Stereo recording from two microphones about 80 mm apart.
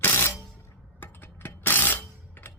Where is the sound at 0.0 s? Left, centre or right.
Left.